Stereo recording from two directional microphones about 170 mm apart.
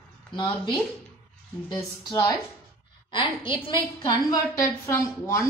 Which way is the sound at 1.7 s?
20° left (ahead or behind).